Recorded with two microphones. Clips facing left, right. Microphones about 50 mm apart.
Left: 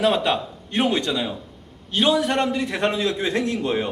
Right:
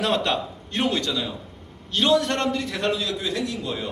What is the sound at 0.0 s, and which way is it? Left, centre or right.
A man's voice, centre.